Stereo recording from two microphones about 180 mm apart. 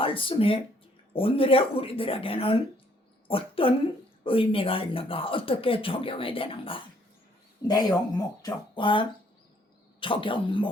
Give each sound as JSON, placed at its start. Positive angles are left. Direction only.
{"t": 0.0, "sound": "speech", "side_deg": 30}